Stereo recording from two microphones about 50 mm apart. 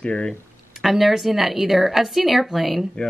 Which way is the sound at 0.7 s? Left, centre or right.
Centre.